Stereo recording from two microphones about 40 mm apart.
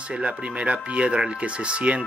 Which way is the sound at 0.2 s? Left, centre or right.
Right.